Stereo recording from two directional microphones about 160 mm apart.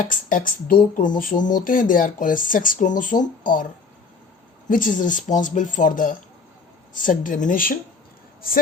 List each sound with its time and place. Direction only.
0.0 s speech: 55° left (ahead or behind)
4.7 s speech: 55° left (ahead or behind)